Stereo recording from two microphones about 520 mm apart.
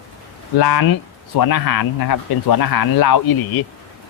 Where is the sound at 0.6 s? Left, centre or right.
Left.